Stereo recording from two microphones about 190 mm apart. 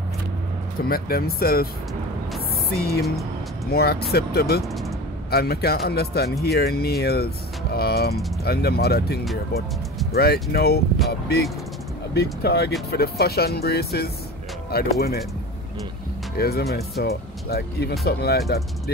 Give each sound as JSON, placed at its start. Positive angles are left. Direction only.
{"t": 0.8, "sound": "speech", "side_deg": 50}
{"t": 2.7, "sound": "speech", "side_deg": 55}
{"t": 4.6, "sound": "speech", "side_deg": 0}
{"t": 5.3, "sound": "speech", "side_deg": 55}
{"t": 12.1, "sound": "speech", "side_deg": 60}
{"t": 16.3, "sound": "speech", "side_deg": 55}